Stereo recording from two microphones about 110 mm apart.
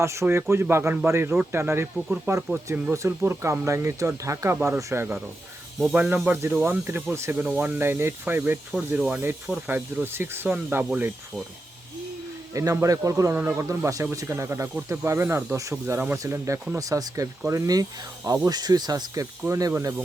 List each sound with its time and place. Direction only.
0.0 s speech: 25° right (ahead or behind)
12.5 s speech: 30° right (ahead or behind)
13.4 s speech: 15° right (ahead or behind)
13.7 s speech: 25° right (ahead or behind)
16.1 s speech: 30° right (ahead or behind)